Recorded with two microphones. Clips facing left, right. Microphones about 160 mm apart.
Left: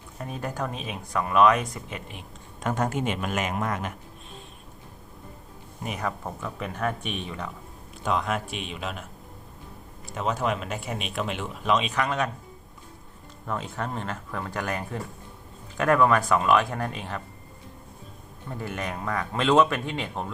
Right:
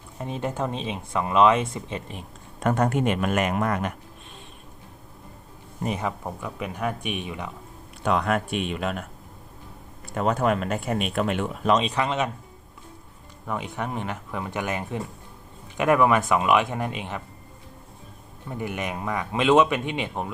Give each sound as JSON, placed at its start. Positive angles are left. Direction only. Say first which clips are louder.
{"t": 0.2, "sound": "speech", "louder": "right 3 dB", "side_deg": -25}
{"t": 2.6, "sound": "speech", "louder": "right 4 dB", "side_deg": 0}
{"t": 6.0, "sound": "speech", "louder": "right 1 dB", "side_deg": -15}
{"t": 8.0, "sound": "speech", "louder": "right 4 dB", "side_deg": 0}
{"t": 10.4, "sound": "speech", "louder": "right 5 dB", "side_deg": -50}
{"t": 11.8, "sound": "speech", "louder": "right 2 dB", "side_deg": -30}
{"t": 13.5, "sound": "speech", "louder": "right 1 dB", "side_deg": -15}
{"t": 18.4, "sound": "speech", "louder": "right 2 dB", "side_deg": -15}